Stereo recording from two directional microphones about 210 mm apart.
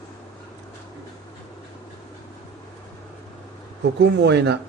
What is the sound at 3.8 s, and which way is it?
Speech, 55° right (ahead or behind).